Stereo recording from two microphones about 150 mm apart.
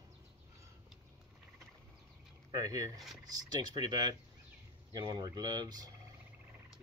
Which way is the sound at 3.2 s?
25° right (ahead or behind).